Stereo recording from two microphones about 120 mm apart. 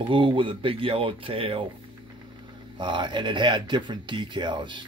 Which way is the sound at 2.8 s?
40° right (ahead or behind).